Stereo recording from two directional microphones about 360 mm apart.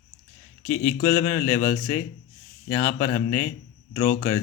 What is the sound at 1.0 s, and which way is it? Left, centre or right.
Speech, centre.